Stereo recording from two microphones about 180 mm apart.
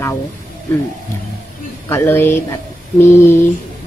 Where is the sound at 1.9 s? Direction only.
10° left (ahead or behind).